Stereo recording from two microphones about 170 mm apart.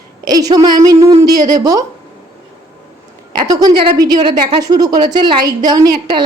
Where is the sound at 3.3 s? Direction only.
25° right (ahead or behind).